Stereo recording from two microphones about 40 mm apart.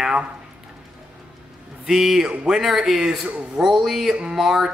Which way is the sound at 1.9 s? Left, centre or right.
Centre.